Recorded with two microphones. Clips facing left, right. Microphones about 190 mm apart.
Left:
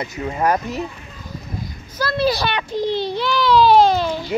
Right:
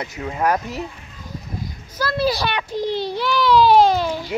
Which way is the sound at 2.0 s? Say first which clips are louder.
Left 1 dB; 10° right (ahead or behind).